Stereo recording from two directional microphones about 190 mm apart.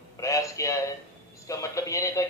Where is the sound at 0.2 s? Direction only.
15° left (ahead or behind).